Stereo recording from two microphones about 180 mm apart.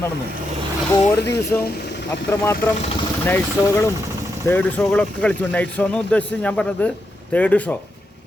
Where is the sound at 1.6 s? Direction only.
65° left (ahead or behind).